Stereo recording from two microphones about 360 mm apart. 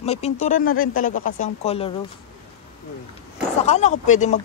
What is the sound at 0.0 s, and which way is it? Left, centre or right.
Speech, centre.